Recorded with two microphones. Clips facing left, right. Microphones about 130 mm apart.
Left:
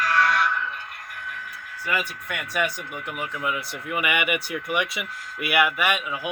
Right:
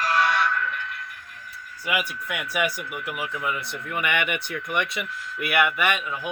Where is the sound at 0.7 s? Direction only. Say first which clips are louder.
Right 3 dB; 45° left (ahead or behind).